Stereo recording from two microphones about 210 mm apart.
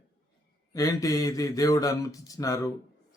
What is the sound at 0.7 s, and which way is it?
Speech, 15° left (ahead or behind).